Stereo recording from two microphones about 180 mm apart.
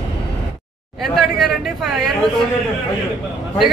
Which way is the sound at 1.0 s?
Centre (ahead or behind).